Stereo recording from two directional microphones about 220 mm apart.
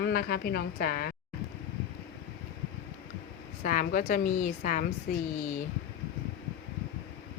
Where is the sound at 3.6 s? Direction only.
35° left (ahead or behind).